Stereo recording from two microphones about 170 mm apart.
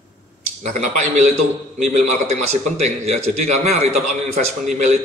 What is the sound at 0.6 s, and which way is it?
A man's voice, 45° right (ahead or behind).